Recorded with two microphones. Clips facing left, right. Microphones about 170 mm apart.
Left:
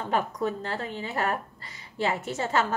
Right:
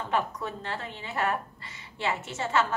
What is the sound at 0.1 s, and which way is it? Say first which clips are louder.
A woman's voice: left 3 dB; 40° left (ahead or behind).